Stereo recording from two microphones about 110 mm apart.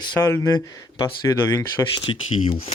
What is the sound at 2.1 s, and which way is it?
Speech, 50° left (ahead or behind).